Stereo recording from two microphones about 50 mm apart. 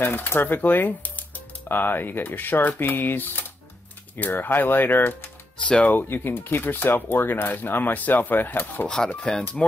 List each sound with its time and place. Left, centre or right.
0.0 s speech: left
5.6 s speech: left
5.9 s speech: left
8.8 s speech: centre